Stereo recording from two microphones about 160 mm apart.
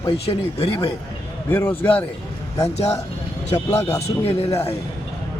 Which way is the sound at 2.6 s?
40° left (ahead or behind).